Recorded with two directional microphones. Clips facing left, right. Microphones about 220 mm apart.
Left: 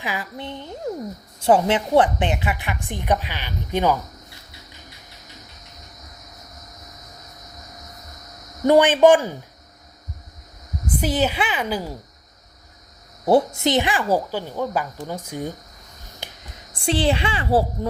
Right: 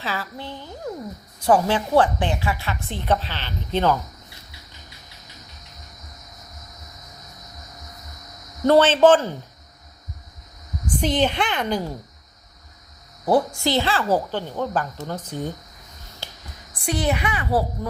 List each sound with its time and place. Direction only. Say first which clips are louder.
0.0 s a woman's voice: left 1 dB; 15° left (ahead or behind)
8.6 s a woman's voice: left 1 dB; 15° left (ahead or behind)
10.8 s a woman's voice: even; 5° left (ahead or behind)
13.2 s a woman's voice: left 2 dB; 25° left (ahead or behind)
16.2 s a sound: left 1 dB; 15° left (ahead or behind)
16.7 s a woman's voice: left 3 dB; 30° left (ahead or behind)